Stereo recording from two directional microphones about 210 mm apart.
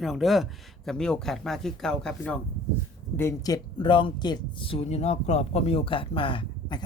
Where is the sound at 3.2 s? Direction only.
15° left (ahead or behind).